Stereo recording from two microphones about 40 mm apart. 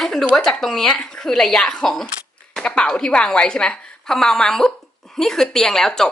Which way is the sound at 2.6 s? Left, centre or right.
Left.